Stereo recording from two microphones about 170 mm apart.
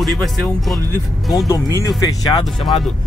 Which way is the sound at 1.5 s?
20° left (ahead or behind).